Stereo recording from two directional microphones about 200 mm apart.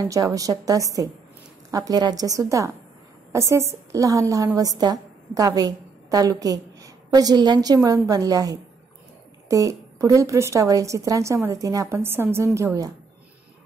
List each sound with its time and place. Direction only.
0.0 s a woman's voice: 15° right (ahead or behind)